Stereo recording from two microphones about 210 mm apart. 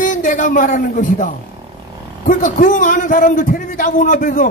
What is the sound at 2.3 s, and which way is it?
A man's voice, 40° left (ahead or behind).